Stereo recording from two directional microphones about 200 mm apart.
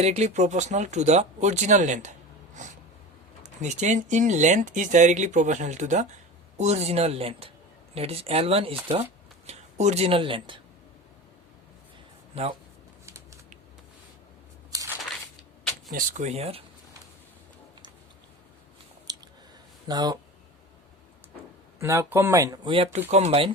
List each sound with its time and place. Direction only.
0.0 s speech: 35° right (ahead or behind)
2.6 s snort: 40° right (ahead or behind)
3.4 s speech: 35° right (ahead or behind)
12.3 s speech: 30° right (ahead or behind)
14.7 s a sound: 15° right (ahead or behind)
15.9 s speech: 40° right (ahead or behind)
19.1 s chewing: 20° right (ahead or behind)
19.9 s speech: 20° right (ahead or behind)
21.8 s speech: 10° right (ahead or behind)
22.7 s speech: 30° right (ahead or behind)